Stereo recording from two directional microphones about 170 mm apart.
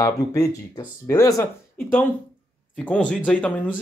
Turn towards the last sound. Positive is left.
turn(degrees=10)  # may be behind; listen again after turning